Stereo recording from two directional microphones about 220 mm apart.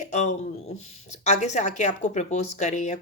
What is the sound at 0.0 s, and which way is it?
A woman's voice, 30° left (ahead or behind).